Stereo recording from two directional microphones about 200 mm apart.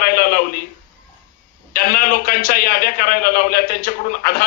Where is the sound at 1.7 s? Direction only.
45° left (ahead or behind).